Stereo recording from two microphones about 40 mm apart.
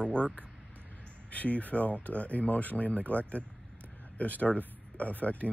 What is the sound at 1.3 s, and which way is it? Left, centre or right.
Speech, left.